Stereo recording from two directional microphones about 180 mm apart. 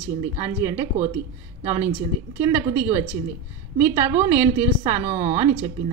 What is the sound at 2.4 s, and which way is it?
A woman's voice, 10° right (ahead or behind).